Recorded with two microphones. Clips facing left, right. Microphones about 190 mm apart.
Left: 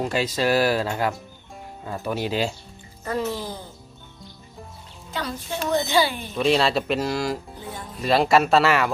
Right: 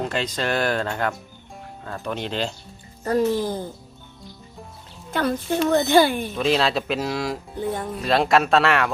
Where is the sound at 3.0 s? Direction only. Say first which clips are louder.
Right 6 dB; 45° right (ahead or behind).